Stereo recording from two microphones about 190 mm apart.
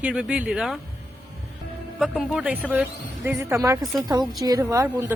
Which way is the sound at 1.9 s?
Centre (ahead or behind).